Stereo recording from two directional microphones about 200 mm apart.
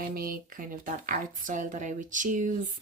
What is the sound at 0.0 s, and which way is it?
Speech, 45° right (ahead or behind).